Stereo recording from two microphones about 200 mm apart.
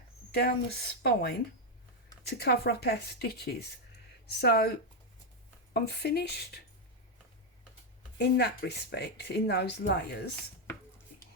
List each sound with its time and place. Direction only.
0.3 s a woman's voice: 55° left (ahead or behind)
5.7 s speech: 55° left (ahead or behind)
8.2 s speech: 55° left (ahead or behind)